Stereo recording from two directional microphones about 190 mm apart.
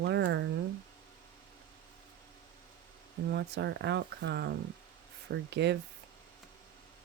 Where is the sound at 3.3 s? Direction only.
65° right (ahead or behind).